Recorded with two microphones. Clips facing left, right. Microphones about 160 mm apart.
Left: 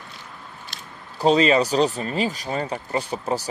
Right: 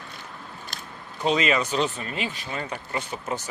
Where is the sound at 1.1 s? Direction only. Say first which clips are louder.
Left 6 dB; 35° left (ahead or behind).